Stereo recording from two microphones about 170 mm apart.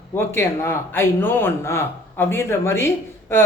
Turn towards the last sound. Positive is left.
turn(degrees=15)  # may be behind; listen again after turning